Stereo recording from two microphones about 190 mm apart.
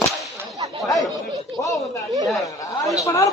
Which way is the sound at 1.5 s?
15° left (ahead or behind).